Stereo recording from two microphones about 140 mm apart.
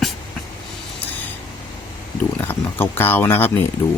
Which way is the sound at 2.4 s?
15° left (ahead or behind).